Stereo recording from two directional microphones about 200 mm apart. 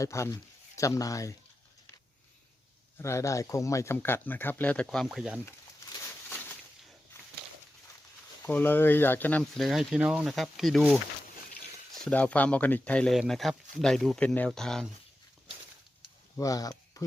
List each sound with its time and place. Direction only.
0.0 s speech: 15° left (ahead or behind)
3.0 s speech: 15° left (ahead or behind); by 5.4 s centre (ahead or behind)
5.5 s a sound: 15° left (ahead or behind)
8.4 s speech: 10° left (ahead or behind)
12.0 s speech: 5° left (ahead or behind)
16.4 s speech: 20° left (ahead or behind)